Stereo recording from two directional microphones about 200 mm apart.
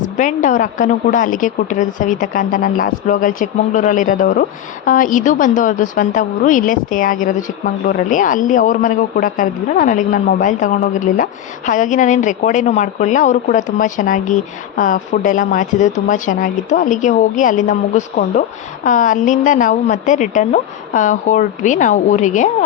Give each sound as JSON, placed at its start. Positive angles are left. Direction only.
{"t": 0.0, "sound": "a man's voice", "side_deg": 40}